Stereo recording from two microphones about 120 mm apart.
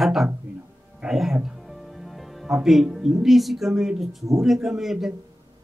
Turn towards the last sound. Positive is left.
turn(degrees=-5)  # may be behind; listen again after turning